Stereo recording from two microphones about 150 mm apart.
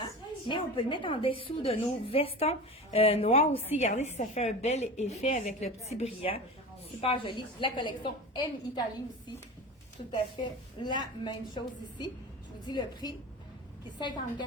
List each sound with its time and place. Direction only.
0.0 s a woman's voice: 30° left (ahead or behind)
10.1 s a woman's voice: 30° left (ahead or behind)